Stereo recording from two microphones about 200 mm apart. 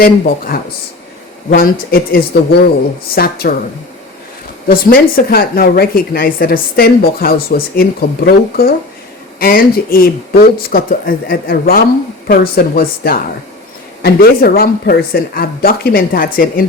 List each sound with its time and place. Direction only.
0.0 s speech: 45° left (ahead or behind)
4.7 s speech: 45° left (ahead or behind)